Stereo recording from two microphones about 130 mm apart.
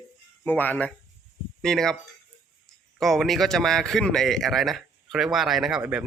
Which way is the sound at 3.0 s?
Centre (ahead or behind).